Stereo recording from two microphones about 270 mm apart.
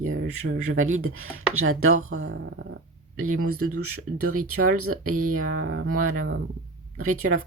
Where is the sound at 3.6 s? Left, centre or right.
Right.